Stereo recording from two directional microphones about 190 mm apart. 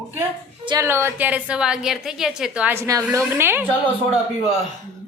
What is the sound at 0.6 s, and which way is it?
Speech, 25° right (ahead or behind).